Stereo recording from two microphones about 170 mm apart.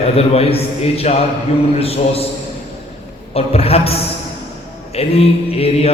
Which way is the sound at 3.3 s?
35° left (ahead or behind).